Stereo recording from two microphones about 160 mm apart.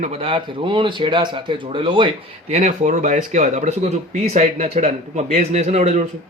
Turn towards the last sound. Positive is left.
turn(degrees=-45)  # may be behind; listen again after turning